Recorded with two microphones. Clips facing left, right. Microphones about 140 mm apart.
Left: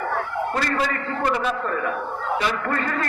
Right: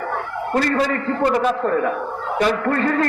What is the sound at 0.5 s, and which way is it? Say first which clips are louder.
A man's voice: right 8 dB; 45° right (ahead or behind).